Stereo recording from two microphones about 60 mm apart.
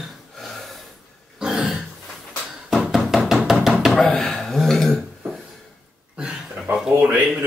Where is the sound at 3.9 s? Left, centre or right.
Centre.